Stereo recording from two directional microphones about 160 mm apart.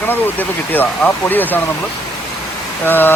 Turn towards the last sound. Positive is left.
turn(degrees=10)  # may be behind; listen again after turning